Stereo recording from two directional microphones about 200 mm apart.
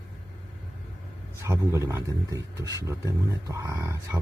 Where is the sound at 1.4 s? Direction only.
15° right (ahead or behind).